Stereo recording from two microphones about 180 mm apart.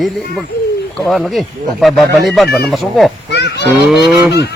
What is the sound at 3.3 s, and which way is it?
Children playing, 70° left (ahead or behind).